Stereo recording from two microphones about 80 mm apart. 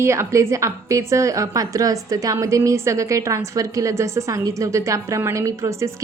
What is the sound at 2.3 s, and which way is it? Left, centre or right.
A woman's voice, right.